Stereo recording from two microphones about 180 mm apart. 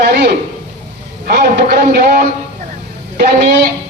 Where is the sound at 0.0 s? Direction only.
55° right (ahead or behind).